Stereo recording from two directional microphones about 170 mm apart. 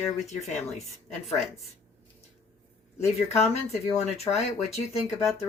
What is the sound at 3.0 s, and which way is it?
Speech, 40° left (ahead or behind).